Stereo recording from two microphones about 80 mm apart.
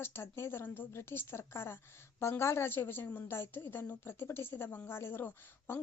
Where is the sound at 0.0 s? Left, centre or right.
Left.